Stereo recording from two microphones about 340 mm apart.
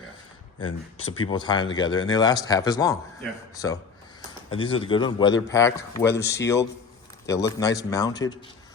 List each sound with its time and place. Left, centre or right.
0.9 s speech: left
1.2 s speech: centre